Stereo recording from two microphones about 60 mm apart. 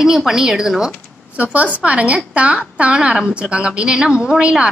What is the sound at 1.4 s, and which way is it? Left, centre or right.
A woman's voice, right.